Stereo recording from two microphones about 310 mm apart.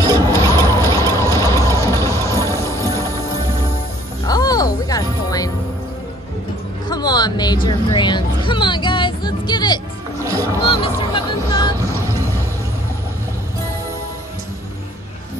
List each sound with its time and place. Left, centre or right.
0.5 s vehicle: centre
4.3 s music: centre
6.9 s a sound: centre
10.2 s music: centre
10.6 s music: centre